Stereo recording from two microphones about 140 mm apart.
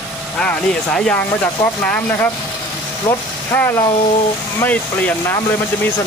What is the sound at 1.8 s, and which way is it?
Speech, 10° left (ahead or behind).